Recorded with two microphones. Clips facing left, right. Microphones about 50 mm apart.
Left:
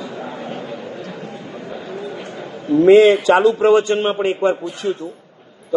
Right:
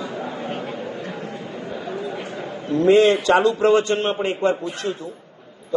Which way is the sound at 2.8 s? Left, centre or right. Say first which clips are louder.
Left 5 dB; centre.